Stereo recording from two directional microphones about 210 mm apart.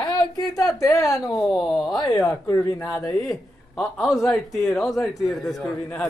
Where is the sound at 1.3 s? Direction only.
Centre (ahead or behind).